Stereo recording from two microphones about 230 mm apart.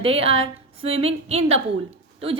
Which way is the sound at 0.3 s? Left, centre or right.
Right.